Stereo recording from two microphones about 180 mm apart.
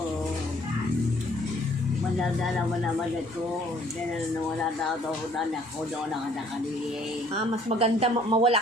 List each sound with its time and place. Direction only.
7.3 s speech: 35° right (ahead or behind)